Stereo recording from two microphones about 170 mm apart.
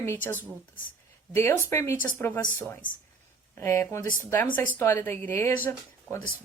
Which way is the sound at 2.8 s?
50° left (ahead or behind).